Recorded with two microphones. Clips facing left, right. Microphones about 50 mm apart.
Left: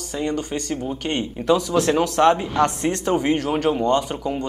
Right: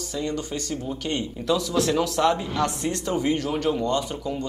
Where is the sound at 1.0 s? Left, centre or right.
Left.